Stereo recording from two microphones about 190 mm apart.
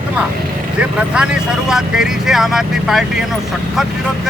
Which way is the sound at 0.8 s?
5° right (ahead or behind).